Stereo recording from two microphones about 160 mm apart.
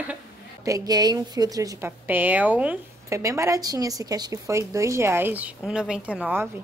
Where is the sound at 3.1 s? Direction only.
20° right (ahead or behind).